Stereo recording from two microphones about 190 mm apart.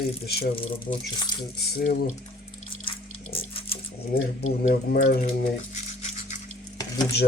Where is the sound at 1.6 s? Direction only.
55° left (ahead or behind).